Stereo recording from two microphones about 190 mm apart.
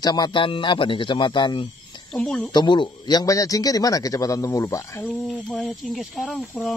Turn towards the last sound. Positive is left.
turn(degrees=0)  # may be behind; listen again after turning